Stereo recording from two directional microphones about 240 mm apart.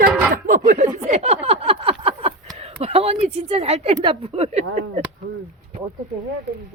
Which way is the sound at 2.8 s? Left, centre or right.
Right.